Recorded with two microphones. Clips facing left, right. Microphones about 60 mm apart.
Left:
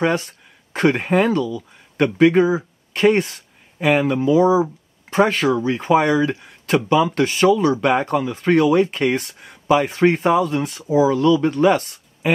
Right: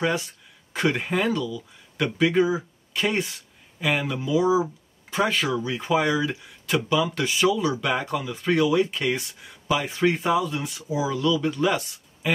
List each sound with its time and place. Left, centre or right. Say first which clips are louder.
0.0 s speech: left 5 dB; left